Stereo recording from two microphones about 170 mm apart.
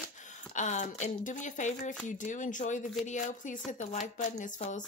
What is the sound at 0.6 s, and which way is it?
Speech, 45° left (ahead or behind).